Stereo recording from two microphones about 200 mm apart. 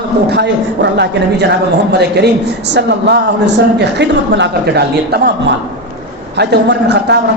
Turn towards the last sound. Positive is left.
turn(degrees=-55)  # may be behind; listen again after turning